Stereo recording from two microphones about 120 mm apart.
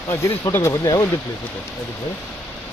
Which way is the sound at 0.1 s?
20° left (ahead or behind).